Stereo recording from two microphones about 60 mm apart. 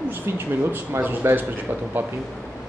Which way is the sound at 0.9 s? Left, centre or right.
Right.